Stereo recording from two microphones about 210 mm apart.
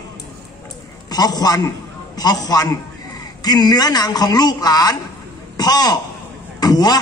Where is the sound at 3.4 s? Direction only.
20° left (ahead or behind).